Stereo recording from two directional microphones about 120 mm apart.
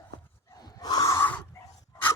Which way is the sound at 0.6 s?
35° left (ahead or behind).